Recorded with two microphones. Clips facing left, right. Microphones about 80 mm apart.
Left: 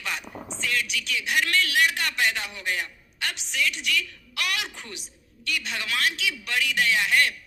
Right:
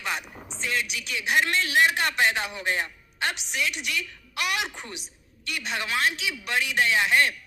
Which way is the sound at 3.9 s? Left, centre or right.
Centre.